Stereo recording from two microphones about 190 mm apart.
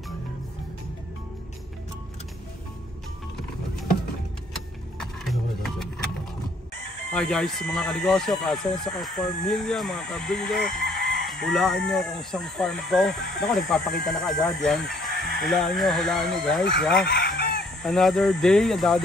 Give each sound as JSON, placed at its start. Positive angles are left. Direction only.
{"t": 4.9, "sound": "a sound", "side_deg": 0}
{"t": 7.1, "sound": "speech", "side_deg": 5}
{"t": 17.0, "sound": "chicken", "side_deg": 60}
{"t": 17.8, "sound": "speech", "side_deg": 0}